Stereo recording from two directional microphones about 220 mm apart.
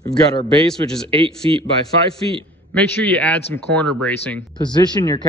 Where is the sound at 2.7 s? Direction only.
5° left (ahead or behind).